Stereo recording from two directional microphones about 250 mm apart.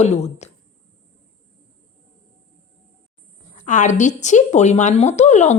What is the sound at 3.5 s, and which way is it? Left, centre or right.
Speech, left.